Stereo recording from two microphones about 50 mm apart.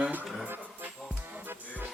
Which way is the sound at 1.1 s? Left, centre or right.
Right.